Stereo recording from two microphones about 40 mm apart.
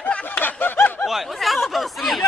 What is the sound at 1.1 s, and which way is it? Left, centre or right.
Speech, centre.